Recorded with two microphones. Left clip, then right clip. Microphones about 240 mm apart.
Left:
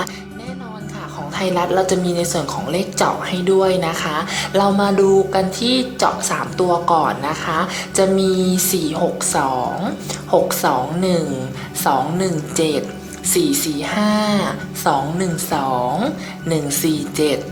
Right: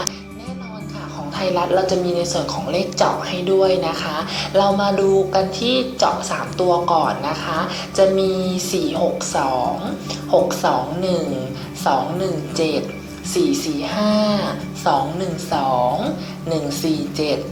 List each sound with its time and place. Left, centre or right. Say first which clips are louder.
1.4 s a woman's voice: even; left
10.6 s a woman's voice: left 1 dB; left
14.0 s a woman's voice: right 1 dB; left